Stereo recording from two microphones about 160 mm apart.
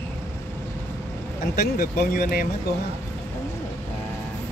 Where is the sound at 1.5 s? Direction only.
70° left (ahead or behind).